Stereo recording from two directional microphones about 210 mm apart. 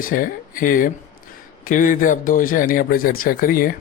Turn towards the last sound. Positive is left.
turn(degrees=40)  # may be behind; listen again after turning